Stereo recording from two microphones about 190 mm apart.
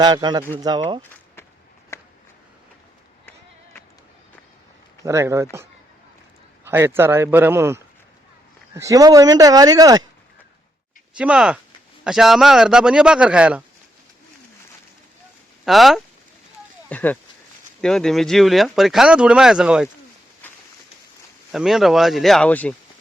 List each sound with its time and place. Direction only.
0.0 s speech: 20° right (ahead or behind)
1.9 s a sound: 15° left (ahead or behind)
5.0 s speech: 15° right (ahead or behind)
6.7 s speech: 10° right (ahead or behind)
11.2 s speech: 5° right (ahead or behind)
15.6 s speech: centre (ahead or behind)
20.4 s a sound: 10° left (ahead or behind)
21.5 s speech: centre (ahead or behind)